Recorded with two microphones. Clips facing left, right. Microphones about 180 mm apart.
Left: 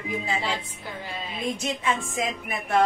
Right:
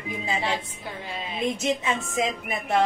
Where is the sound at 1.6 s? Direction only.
20° right (ahead or behind).